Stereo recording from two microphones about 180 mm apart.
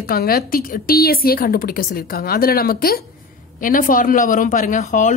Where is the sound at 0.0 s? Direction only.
55° left (ahead or behind).